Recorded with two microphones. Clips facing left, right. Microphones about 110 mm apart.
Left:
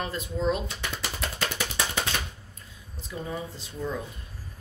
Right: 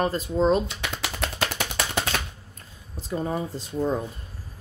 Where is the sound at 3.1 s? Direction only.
45° right (ahead or behind).